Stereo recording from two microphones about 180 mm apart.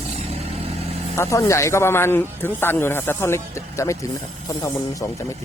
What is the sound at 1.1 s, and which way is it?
Speech, 15° left (ahead or behind).